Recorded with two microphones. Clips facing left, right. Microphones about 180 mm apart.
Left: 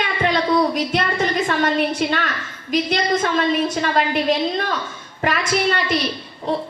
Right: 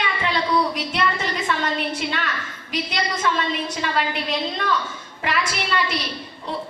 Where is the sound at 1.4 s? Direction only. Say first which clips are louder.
Left 5 dB; 45° left (ahead or behind).